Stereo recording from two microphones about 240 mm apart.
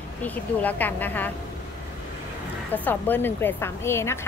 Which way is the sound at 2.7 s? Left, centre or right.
Centre.